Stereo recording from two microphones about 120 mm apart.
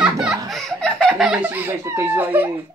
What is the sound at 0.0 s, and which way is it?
Laughter, 10° right (ahead or behind).